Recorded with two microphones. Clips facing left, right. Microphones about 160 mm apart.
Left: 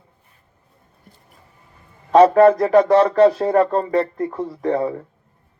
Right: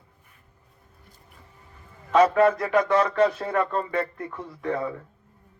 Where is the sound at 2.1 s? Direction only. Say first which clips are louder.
Left 7 dB; 35° left (ahead or behind).